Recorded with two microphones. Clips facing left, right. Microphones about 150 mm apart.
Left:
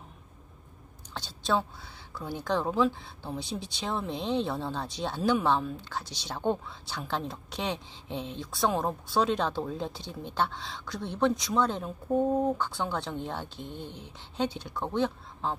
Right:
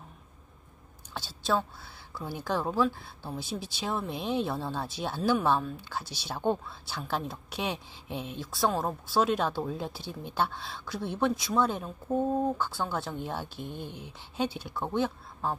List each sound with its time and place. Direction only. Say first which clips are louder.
1.1 s a woman's voice: even; 5° right (ahead or behind)
12.1 s speech: left 2 dB; 15° left (ahead or behind)
12.5 s a woman's voice: even; 5° right (ahead or behind)